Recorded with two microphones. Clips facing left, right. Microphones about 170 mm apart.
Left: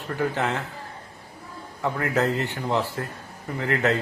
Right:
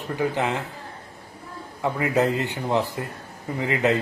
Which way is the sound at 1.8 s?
15° right (ahead or behind).